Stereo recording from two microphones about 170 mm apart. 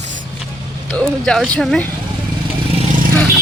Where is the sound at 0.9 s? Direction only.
5° left (ahead or behind).